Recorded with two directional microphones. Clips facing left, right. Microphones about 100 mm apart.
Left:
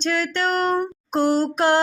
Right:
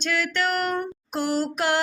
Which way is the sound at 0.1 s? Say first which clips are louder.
Left 2 dB; 30° left (ahead or behind).